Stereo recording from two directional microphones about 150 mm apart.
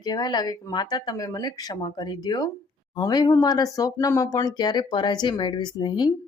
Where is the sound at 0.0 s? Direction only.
30° left (ahead or behind).